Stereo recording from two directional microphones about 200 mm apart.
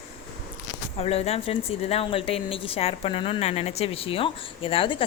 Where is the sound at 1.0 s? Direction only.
30° left (ahead or behind).